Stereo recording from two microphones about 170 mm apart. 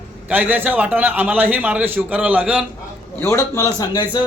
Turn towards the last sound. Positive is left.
turn(degrees=25)  # may be behind; listen again after turning